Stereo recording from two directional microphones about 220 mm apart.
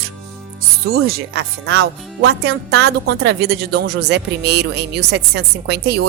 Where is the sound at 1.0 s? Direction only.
45° right (ahead or behind).